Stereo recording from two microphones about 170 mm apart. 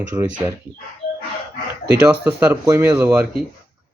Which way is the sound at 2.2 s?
10° right (ahead or behind).